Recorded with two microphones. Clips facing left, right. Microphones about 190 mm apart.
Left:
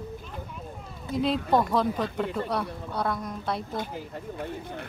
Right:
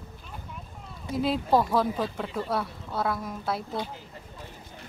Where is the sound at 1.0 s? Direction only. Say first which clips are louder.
Even; centre (ahead or behind).